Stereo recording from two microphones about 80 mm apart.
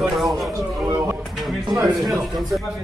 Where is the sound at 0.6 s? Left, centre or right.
Right.